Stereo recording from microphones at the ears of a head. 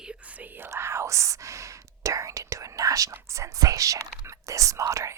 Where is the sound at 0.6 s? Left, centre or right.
Right.